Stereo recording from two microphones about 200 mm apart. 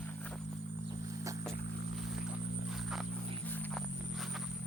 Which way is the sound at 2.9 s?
Centre (ahead or behind).